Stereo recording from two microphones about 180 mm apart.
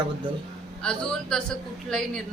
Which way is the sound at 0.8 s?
5° left (ahead or behind).